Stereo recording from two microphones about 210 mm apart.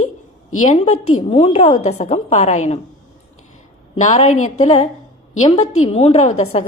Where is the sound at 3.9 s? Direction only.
35° left (ahead or behind).